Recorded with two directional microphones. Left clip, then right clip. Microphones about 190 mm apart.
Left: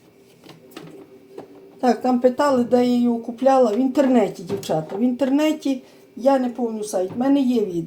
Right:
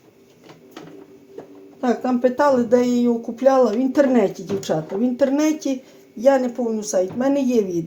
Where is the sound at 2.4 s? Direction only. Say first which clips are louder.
Right 2 dB; 35° right (ahead or behind).